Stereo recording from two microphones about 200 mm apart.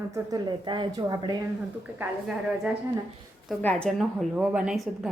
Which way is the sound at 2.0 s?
5° right (ahead or behind).